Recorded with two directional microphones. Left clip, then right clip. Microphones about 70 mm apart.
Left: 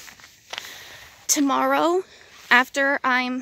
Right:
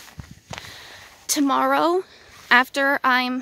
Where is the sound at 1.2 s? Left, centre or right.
Centre.